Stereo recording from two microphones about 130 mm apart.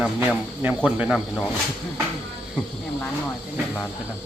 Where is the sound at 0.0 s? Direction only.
10° right (ahead or behind).